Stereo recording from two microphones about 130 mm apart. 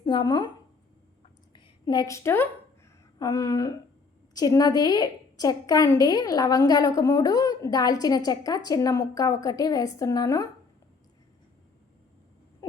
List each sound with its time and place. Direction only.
0.0 s speech: 35° left (ahead or behind)
1.5 s a woman's voice: 35° left (ahead or behind)